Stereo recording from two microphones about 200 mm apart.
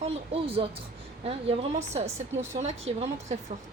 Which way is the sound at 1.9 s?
35° right (ahead or behind).